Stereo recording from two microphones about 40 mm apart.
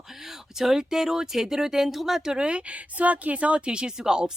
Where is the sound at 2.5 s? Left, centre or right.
Right.